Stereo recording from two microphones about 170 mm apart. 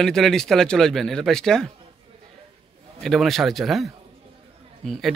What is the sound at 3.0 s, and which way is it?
A man's voice, centre (ahead or behind).